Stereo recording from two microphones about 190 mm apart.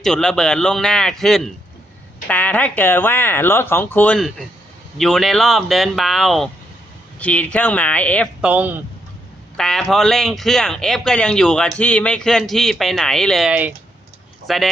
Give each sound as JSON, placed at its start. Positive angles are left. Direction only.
{"t": 0.0, "sound": "speech", "side_deg": 5}
{"t": 8.4, "sound": "speech", "side_deg": -10}
{"t": 9.6, "sound": "speech", "side_deg": 5}